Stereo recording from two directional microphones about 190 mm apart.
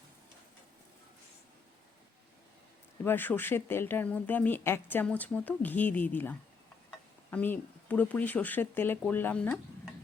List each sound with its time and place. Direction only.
3.0 s speech: 10° left (ahead or behind)